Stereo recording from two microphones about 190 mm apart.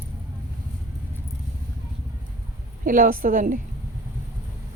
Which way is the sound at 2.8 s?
45° right (ahead or behind).